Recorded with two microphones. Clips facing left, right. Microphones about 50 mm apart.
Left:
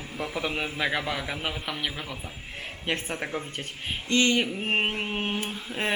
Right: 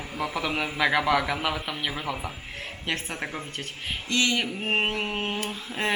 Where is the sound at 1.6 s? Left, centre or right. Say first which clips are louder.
Even; centre.